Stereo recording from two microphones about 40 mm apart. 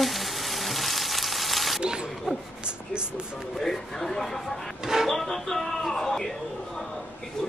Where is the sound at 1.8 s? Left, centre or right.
Right.